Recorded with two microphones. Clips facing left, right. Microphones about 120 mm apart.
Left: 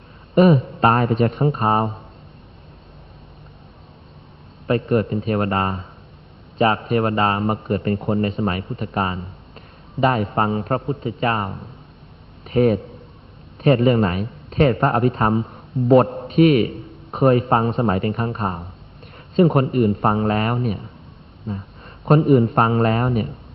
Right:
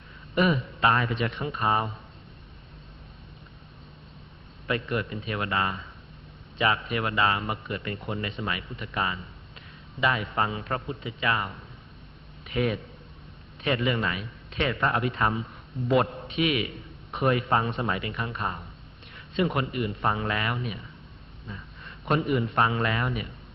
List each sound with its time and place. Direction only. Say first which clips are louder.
0.3 s a man's voice: left 10 dB; 40° left (ahead or behind)
4.6 s a man's voice: left 10 dB; 40° left (ahead or behind)